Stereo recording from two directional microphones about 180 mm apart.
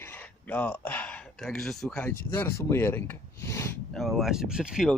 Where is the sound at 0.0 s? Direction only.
10° left (ahead or behind).